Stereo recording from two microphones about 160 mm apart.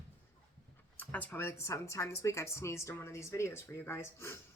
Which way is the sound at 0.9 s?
10° left (ahead or behind).